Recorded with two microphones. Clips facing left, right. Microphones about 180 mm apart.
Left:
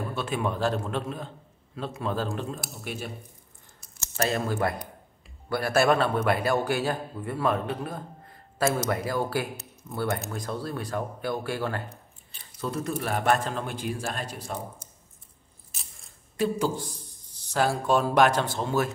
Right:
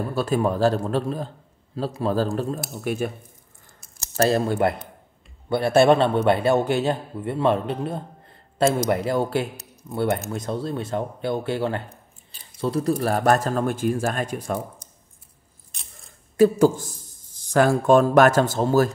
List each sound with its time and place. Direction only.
0.1 s a man's voice: 40° right (ahead or behind)
4.0 s a man's voice: 35° right (ahead or behind); by 14.6 s 50° right (ahead or behind)
15.7 s a sound: centre (ahead or behind)
16.3 s speech: 45° right (ahead or behind)